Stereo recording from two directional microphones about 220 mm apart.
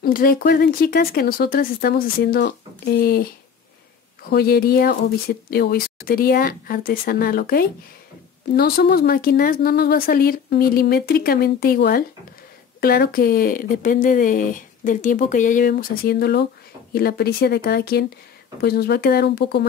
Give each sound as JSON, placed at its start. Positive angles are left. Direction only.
{"t": 0.0, "sound": "speech", "side_deg": 40}
{"t": 4.3, "sound": "speech", "side_deg": 45}